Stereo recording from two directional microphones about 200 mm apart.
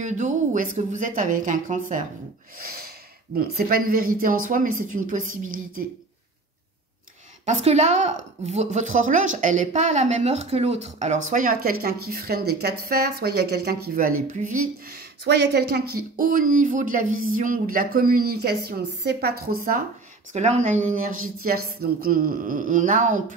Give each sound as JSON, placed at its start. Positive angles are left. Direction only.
{"t": 0.0, "sound": "a woman's voice", "side_deg": -40}
{"t": 2.6, "sound": "snort", "side_deg": -50}
{"t": 3.3, "sound": "a woman's voice", "side_deg": -45}
{"t": 7.4, "sound": "a woman's voice", "side_deg": -35}
{"t": 14.3, "sound": "a woman's voice", "side_deg": -40}
{"t": 15.2, "sound": "a woman's voice", "side_deg": -55}
{"t": 20.3, "sound": "a woman's voice", "side_deg": -35}